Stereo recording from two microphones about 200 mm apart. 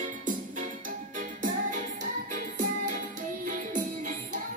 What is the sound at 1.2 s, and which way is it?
Music, 40° right (ahead or behind).